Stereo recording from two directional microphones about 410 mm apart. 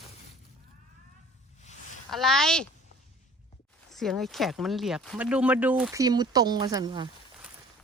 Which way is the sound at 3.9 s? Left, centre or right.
Centre.